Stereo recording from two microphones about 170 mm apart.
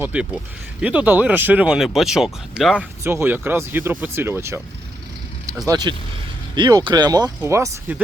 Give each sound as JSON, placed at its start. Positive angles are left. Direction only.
{"t": 0.0, "sound": "speech", "side_deg": -5}
{"t": 3.0, "sound": "speech", "side_deg": -15}